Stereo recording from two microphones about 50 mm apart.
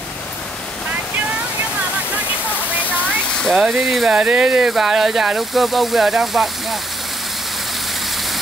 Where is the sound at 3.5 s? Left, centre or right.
Centre.